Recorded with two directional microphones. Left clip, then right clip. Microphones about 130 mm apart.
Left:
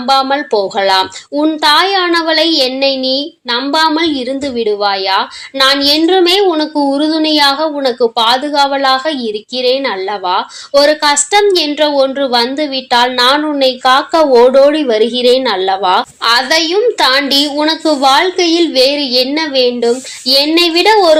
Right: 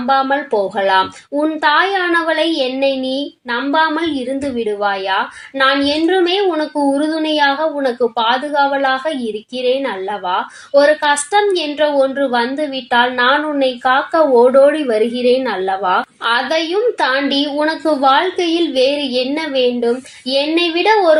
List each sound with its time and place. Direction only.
0.1 s a woman's voice: 20° left (ahead or behind)